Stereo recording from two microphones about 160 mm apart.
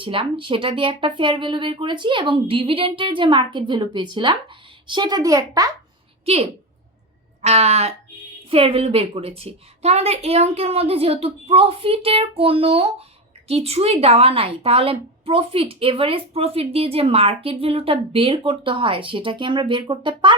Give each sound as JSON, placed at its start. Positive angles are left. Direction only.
{"t": 0.0, "sound": "a woman's voice", "side_deg": -35}
{"t": 6.2, "sound": "a woman's voice", "side_deg": -40}